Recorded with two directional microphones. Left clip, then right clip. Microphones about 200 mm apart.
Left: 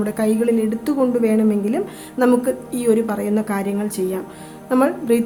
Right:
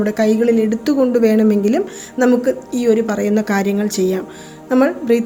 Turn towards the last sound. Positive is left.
turn(degrees=-10)  # may be behind; listen again after turning